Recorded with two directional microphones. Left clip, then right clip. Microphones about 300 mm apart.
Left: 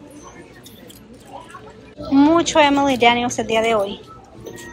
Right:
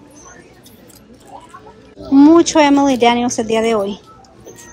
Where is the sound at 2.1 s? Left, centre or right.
Centre.